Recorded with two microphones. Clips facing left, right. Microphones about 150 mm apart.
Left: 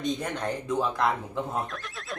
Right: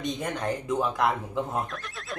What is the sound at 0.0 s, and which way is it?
Speech, centre (ahead or behind).